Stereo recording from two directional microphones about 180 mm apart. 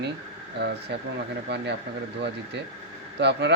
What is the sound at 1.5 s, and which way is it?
Speech, 70° right (ahead or behind).